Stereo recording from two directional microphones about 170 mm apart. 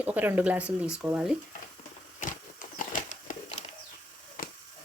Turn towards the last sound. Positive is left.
turn(degrees=45)  # may be behind; listen again after turning